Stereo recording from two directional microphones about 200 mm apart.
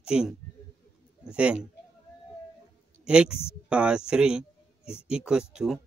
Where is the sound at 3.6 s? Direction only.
5° right (ahead or behind).